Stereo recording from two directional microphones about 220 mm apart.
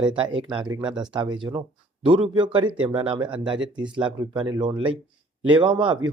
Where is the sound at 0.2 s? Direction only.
20° right (ahead or behind).